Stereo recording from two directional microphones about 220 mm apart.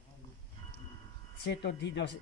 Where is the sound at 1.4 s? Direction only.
50° left (ahead or behind).